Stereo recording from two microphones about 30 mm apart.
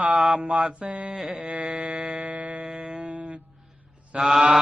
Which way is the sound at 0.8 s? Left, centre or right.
Right.